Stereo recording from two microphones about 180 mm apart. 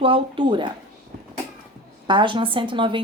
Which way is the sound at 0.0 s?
30° right (ahead or behind).